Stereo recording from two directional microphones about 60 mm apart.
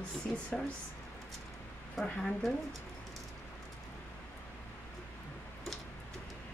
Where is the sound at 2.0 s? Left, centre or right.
Centre.